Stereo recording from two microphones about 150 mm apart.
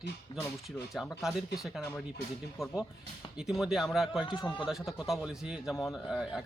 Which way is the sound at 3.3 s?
5° right (ahead or behind).